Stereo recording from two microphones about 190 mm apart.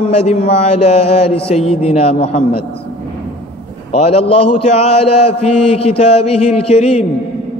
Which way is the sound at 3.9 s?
30° left (ahead or behind).